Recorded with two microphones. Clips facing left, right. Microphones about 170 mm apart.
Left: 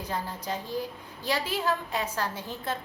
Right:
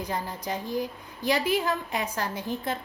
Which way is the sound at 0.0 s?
15° right (ahead or behind).